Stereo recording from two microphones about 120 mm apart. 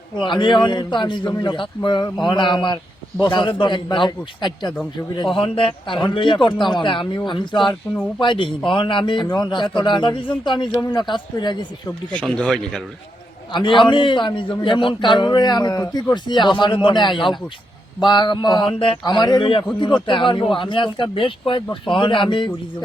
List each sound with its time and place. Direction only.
0.2 s a man's voice: 40° left (ahead or behind)
12.1 s speech: 10° left (ahead or behind)
13.5 s a man's voice: 45° left (ahead or behind)